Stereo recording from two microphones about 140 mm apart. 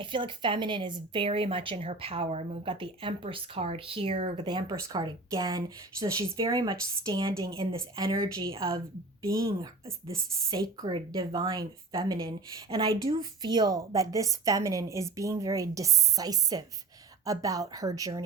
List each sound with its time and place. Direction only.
0.0 s a woman's voice: 35° right (ahead or behind)
9.2 s a woman's voice: 20° right (ahead or behind)
10.9 s a woman's voice: 40° right (ahead or behind)